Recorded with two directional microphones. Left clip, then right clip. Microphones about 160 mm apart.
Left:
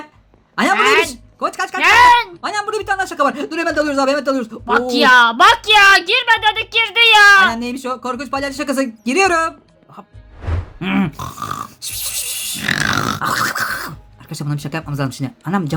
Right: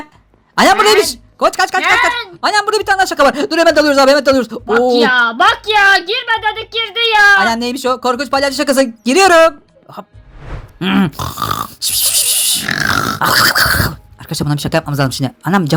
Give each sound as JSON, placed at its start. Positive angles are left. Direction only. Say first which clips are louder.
{"t": 0.5, "sound": "a sound", "louder": "right 4 dB", "side_deg": -50}
{"t": 1.8, "sound": "a woman's voice", "louder": "left 7 dB", "side_deg": 10}
{"t": 2.4, "sound": "speech", "louder": "right 8 dB", "side_deg": -50}
{"t": 4.9, "sound": "a woman's voice", "louder": "left 1 dB", "side_deg": 15}
{"t": 7.5, "sound": "speech", "louder": "right 7 dB", "side_deg": -45}
{"t": 10.8, "sound": "a sound", "louder": "right 5 dB", "side_deg": -35}
{"t": 12.6, "sound": "grunt", "louder": "left 1 dB", "side_deg": 5}
{"t": 13.2, "sound": "speech", "louder": "right 12 dB", "side_deg": -45}